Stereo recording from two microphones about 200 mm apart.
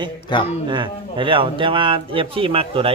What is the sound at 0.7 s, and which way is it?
Speech, 25° right (ahead or behind).